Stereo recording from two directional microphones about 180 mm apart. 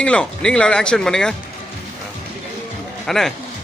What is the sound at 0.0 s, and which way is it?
Speech, 5° left (ahead or behind).